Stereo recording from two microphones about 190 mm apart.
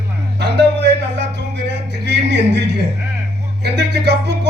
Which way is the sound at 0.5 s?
65° right (ahead or behind).